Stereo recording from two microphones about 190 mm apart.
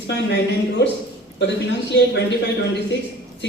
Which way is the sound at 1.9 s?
65° left (ahead or behind).